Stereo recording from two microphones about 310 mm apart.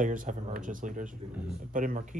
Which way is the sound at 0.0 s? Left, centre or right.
Right.